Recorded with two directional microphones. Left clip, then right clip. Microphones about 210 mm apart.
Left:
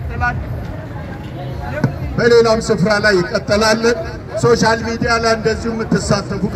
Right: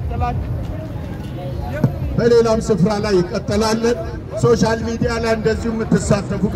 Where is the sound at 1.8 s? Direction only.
10° right (ahead or behind).